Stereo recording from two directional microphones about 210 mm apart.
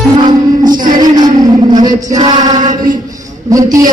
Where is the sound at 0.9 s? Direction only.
20° right (ahead or behind).